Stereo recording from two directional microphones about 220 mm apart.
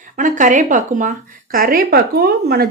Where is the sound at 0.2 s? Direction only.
35° right (ahead or behind).